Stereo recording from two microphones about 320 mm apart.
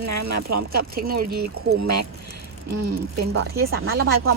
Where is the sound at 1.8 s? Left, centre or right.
Right.